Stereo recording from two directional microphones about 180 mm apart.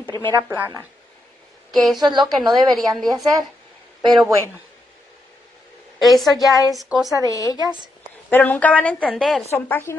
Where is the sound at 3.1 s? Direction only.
20° right (ahead or behind).